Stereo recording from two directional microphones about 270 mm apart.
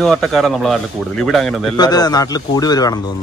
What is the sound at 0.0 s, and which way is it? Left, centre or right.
Speech, centre.